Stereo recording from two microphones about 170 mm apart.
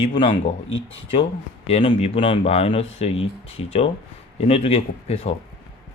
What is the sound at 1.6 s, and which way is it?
Speech, 35° left (ahead or behind).